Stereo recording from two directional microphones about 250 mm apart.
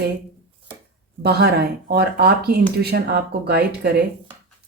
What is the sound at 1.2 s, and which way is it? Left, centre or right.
Speech, right.